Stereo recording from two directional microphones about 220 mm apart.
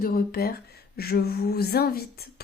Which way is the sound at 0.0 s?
40° left (ahead or behind).